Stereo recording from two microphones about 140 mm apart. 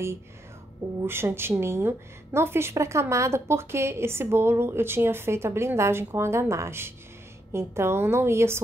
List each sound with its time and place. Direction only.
1.0 s a woman's voice: 15° right (ahead or behind)